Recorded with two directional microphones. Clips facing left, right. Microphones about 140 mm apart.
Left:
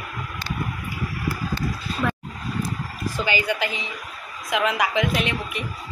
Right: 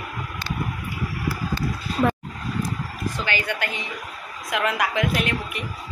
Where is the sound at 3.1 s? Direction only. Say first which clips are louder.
Left 5 dB; 10° left (ahead or behind).